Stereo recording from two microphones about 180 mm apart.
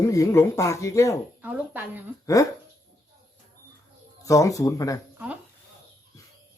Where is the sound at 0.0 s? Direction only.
15° left (ahead or behind).